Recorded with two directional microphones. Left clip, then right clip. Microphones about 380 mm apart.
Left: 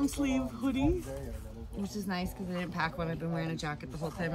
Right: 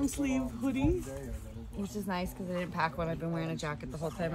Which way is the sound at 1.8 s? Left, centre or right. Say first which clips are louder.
Right 1 dB; centre.